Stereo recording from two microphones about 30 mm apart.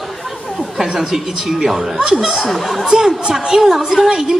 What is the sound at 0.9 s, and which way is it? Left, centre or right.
A woman's voice, centre.